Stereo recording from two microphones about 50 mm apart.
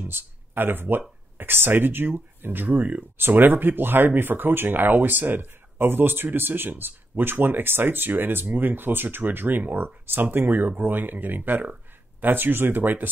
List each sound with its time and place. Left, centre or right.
0.0 s speech: right